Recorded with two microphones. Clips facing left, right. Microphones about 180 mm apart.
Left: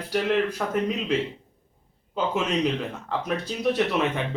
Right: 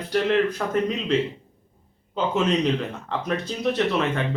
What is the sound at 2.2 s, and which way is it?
A man's voice, 5° left (ahead or behind).